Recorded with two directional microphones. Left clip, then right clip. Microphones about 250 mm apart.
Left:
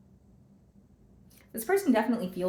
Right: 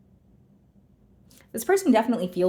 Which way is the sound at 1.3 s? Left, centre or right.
Right.